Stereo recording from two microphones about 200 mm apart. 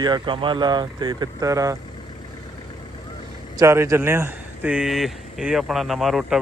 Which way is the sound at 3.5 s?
15° right (ahead or behind).